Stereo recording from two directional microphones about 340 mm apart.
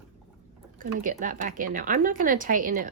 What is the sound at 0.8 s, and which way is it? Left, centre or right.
Speech, right.